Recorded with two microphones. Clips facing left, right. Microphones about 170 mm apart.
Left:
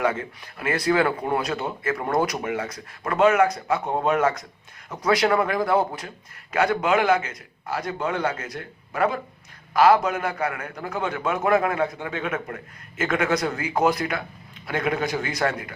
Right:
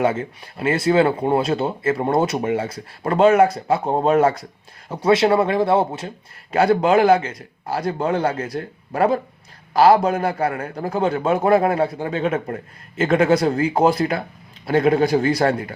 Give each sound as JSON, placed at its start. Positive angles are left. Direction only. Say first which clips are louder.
{"t": 0.0, "sound": "a man's voice", "louder": "right 4 dB", "side_deg": -25}